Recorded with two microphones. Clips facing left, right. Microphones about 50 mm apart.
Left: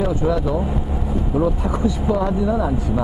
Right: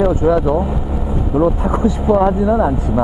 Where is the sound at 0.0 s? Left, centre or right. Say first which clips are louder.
Right 6 dB; right.